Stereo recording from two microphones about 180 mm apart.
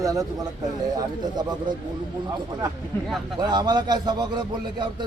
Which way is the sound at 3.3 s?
25° right (ahead or behind).